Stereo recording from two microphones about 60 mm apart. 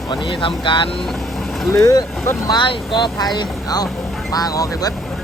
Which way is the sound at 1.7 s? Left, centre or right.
Left.